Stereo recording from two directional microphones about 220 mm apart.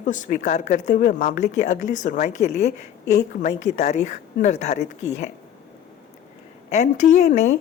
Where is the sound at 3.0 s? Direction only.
45° left (ahead or behind).